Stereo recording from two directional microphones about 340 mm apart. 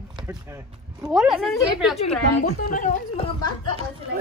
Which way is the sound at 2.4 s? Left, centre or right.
Left.